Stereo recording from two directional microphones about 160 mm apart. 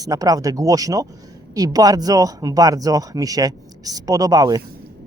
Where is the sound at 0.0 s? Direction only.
20° right (ahead or behind).